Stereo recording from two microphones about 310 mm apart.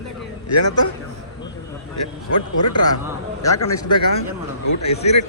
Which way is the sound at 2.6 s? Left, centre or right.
Left.